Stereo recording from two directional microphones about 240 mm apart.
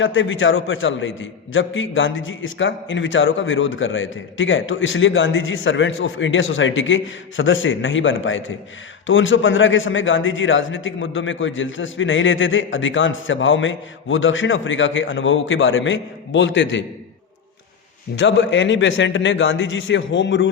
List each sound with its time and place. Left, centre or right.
0.0 s a man's voice: left
18.2 s a man's voice: left